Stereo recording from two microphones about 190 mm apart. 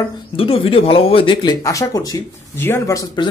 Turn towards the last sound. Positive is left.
turn(degrees=15)  # may be behind; listen again after turning